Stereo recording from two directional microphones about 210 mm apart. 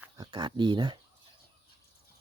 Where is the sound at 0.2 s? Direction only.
20° right (ahead or behind).